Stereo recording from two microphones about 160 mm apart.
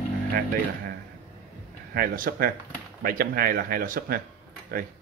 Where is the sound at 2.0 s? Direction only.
65° right (ahead or behind).